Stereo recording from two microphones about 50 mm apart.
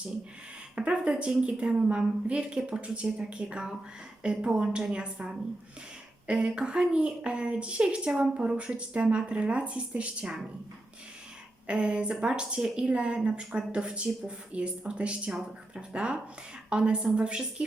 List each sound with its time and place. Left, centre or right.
0.8 s a woman's voice: right
11.7 s a woman's voice: right